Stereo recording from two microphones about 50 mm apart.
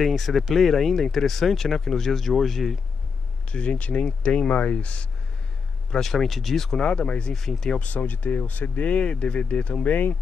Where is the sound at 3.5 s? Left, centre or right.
Left.